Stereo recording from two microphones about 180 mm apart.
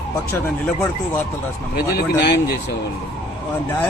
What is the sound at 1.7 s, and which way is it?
Speech, 60° left (ahead or behind).